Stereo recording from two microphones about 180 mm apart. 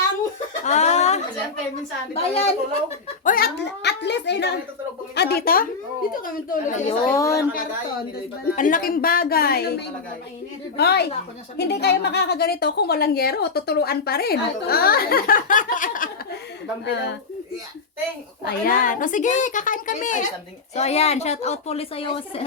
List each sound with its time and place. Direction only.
0.6 s a sound: 40° left (ahead or behind)
2.1 s a woman's voice: 35° left (ahead or behind)
3.2 s a child's voice: 55° left (ahead or behind)
7.0 s a woman's voice: 15° left (ahead or behind)
8.1 s a woman's voice: 50° left (ahead or behind)
16.8 s a child's voice: 70° left (ahead or behind)
18.4 s a woman's voice: 50° left (ahead or behind); by 22.4 s 30° left (ahead or behind)